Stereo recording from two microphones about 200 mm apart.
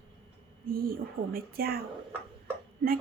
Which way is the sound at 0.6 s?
45° right (ahead or behind).